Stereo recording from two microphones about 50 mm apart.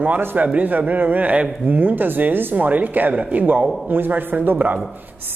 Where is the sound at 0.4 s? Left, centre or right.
Right.